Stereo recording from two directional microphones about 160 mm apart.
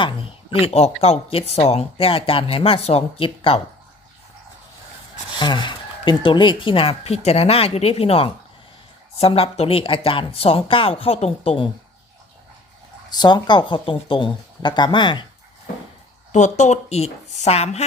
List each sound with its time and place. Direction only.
0.0 s speech: 35° left (ahead or behind)
5.4 s speech: 30° left (ahead or behind)
13.1 s speech: 25° left (ahead or behind)
16.3 s a woman's voice: 45° left (ahead or behind)